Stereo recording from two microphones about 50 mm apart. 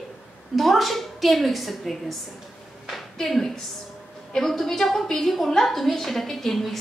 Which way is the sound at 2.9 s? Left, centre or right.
Centre.